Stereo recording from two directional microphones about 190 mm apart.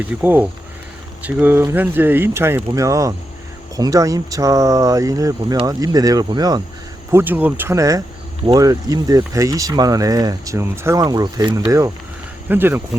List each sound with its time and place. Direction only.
0.0 s speech: 10° right (ahead or behind)